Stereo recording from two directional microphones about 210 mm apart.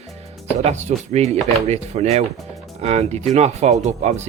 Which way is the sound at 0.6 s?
30° right (ahead or behind).